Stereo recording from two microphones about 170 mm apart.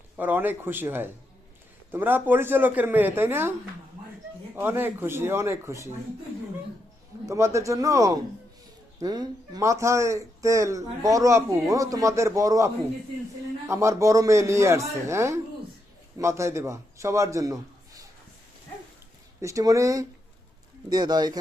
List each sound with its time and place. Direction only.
0.2 s speech: 10° right (ahead or behind)
4.5 s speech: 15° right (ahead or behind)
7.3 s a man's voice: 15° right (ahead or behind)
19.4 s a man's voice: 20° right (ahead or behind)